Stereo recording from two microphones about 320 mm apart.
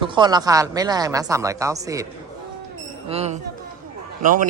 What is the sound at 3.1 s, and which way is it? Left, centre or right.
Speech, centre.